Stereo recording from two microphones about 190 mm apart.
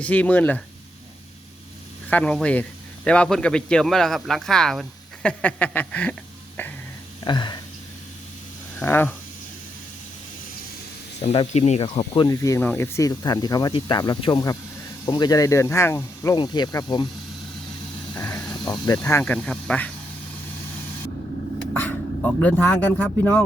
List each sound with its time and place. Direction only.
0.0 s speech: 5° left (ahead or behind)
2.0 s a man's voice: 5° left (ahead or behind)
6.6 s a sound: 10° left (ahead or behind)
7.3 s speech: 25° left (ahead or behind)
8.8 s speech: 10° left (ahead or behind)
11.2 s speech: 35° left (ahead or behind)
18.1 s snake: 15° left (ahead or behind)
19.0 s speech: 5° left (ahead or behind)
21.7 s speech: 10° left (ahead or behind)